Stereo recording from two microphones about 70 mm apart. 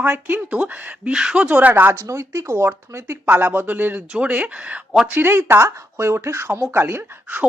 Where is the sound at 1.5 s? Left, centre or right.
Right.